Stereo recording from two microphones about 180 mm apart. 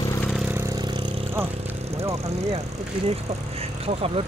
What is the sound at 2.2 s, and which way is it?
Speech, 35° right (ahead or behind).